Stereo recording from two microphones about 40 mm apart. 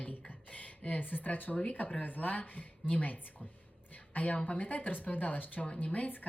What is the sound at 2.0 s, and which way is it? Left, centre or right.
A woman's voice, left.